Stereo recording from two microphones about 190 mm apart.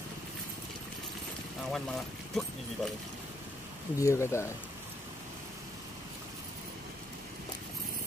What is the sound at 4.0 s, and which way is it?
Speech, 15° left (ahead or behind).